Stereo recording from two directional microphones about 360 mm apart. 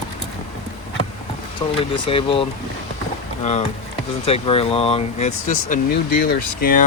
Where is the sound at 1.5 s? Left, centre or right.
Centre.